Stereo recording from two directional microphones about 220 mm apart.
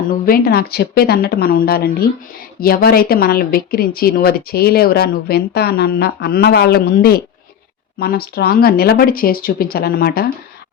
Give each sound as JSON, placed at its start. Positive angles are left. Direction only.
{"t": 0.1, "sound": "a woman's voice", "side_deg": 40}